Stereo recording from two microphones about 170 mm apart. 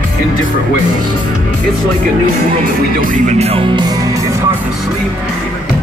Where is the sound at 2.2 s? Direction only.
55° right (ahead or behind).